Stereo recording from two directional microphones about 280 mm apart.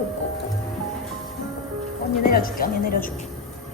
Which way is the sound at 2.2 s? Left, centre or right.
Left.